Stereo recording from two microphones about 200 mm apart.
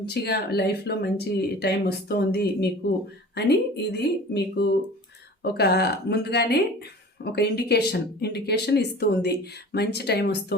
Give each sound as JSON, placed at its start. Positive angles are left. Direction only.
{"t": 0.0, "sound": "a woman's voice", "side_deg": 55}